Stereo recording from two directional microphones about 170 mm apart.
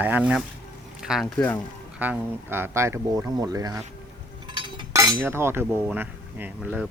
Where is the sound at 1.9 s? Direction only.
10° right (ahead or behind).